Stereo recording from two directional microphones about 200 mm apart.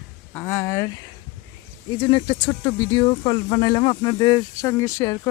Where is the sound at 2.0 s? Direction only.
25° left (ahead or behind).